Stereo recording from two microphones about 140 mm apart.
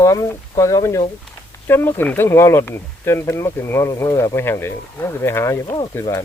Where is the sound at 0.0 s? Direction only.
20° left (ahead or behind).